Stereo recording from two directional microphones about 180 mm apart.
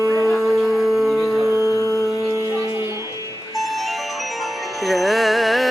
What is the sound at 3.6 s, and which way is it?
Music, centre (ahead or behind).